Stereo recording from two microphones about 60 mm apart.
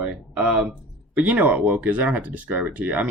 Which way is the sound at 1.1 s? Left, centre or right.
Right.